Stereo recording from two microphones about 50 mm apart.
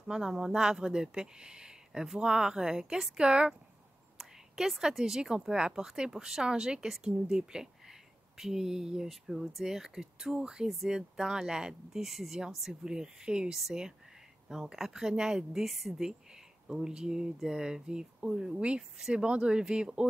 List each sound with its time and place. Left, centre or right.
0.1 s speech: centre
1.9 s speech: centre
2.1 s speech: centre
4.2 s speech: centre
16.6 s speech: centre
19.1 s speech: right